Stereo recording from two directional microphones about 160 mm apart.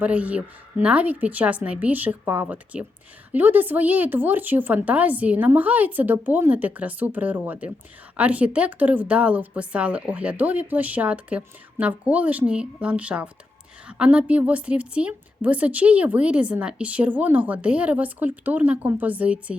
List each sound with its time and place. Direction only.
0.0 s a woman's voice: 10° right (ahead or behind)